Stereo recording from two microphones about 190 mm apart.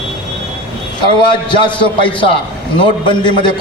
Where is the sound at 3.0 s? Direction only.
25° left (ahead or behind).